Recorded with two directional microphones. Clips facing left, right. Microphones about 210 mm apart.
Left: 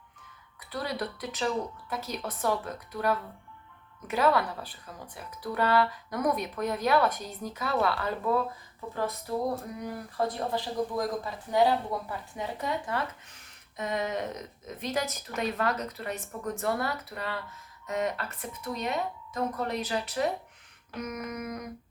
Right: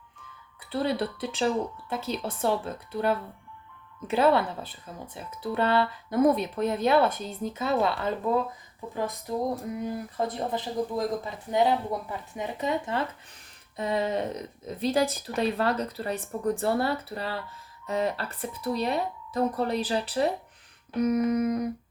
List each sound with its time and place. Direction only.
0.7 s speech: 30° right (ahead or behind)